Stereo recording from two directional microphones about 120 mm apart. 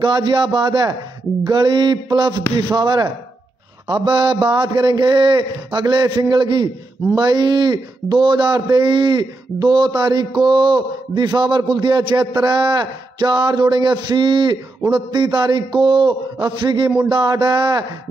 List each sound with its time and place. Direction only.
0.0 s speech: 35° right (ahead or behind)